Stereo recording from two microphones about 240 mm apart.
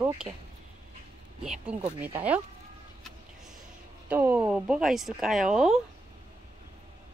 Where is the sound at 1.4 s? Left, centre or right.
Centre.